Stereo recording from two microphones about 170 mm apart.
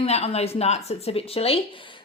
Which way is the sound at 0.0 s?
35° left (ahead or behind).